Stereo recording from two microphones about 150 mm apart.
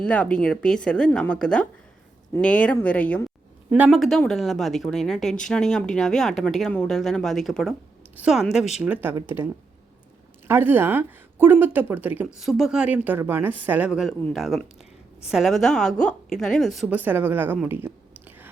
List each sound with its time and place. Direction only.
0.0 s speech: 10° left (ahead or behind)
3.7 s a woman's voice: 5° right (ahead or behind)
12.4 s a woman's voice: centre (ahead or behind)
16.9 s a woman's voice: 10° right (ahead or behind)